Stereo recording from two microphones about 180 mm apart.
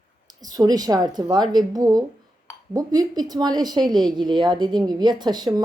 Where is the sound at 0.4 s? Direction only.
20° right (ahead or behind).